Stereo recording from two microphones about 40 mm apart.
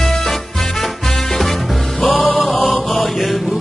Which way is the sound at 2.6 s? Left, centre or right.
Centre.